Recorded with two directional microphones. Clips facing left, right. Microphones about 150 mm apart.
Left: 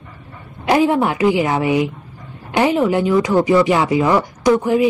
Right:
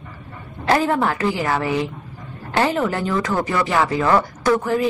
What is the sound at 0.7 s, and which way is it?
Speech, 15° left (ahead or behind).